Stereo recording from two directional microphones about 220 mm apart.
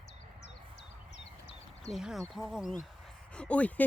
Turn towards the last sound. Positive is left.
turn(degrees=5)  # may be behind; listen again after turning